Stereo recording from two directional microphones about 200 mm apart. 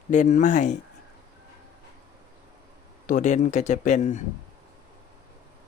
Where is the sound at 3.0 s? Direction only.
40° left (ahead or behind).